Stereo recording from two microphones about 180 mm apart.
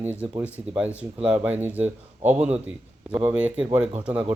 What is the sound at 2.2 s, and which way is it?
Speech, 40° right (ahead or behind).